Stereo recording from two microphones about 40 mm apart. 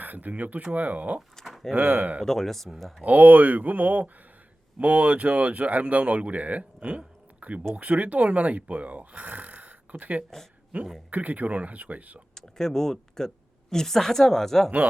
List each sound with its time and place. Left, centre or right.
0.0 s speech: right
2.2 s speech: centre
3.0 s speech: right
6.8 s a sound: right
7.8 s speech: right
12.3 s a woman's voice: centre